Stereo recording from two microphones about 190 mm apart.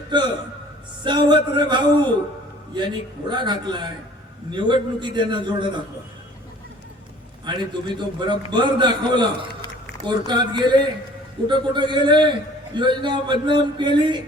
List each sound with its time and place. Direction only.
1.0 s a man's voice: 25° right (ahead or behind)
7.4 s a man's voice: 25° right (ahead or behind)